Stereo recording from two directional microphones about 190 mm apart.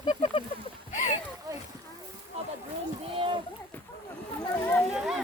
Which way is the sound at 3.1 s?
30° right (ahead or behind).